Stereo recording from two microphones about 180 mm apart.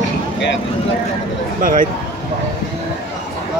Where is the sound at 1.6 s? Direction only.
50° right (ahead or behind).